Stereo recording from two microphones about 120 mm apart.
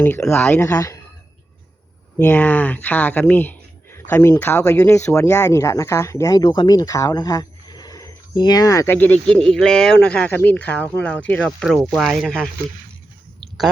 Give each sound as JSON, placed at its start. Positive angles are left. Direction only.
{"t": 0.3, "sound": "speech", "side_deg": 20}
{"t": 0.7, "sound": "speech", "side_deg": 30}
{"t": 2.1, "sound": "speech", "side_deg": 15}
{"t": 9.0, "sound": "speech", "side_deg": 10}